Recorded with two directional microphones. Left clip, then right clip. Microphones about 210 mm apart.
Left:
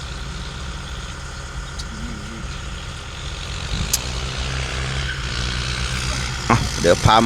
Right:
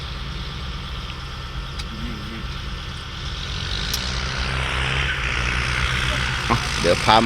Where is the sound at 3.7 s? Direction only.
45° left (ahead or behind).